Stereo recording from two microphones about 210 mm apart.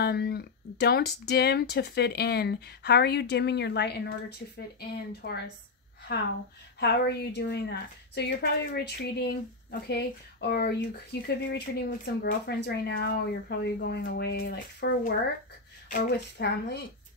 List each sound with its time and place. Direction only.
0.0 s a woman's voice: 50° left (ahead or behind)